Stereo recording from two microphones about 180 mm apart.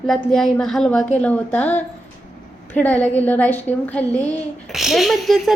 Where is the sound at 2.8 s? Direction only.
10° left (ahead or behind).